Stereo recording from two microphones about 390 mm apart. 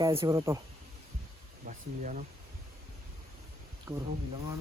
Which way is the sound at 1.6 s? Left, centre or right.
Centre.